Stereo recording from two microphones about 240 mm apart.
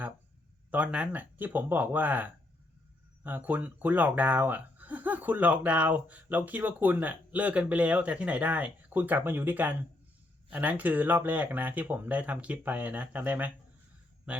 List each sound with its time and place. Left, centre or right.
0.7 s speech: centre